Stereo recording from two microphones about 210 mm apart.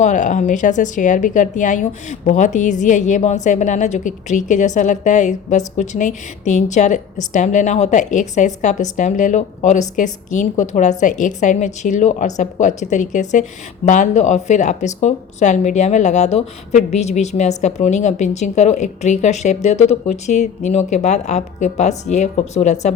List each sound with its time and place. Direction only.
0.0 s a woman's voice: 35° left (ahead or behind)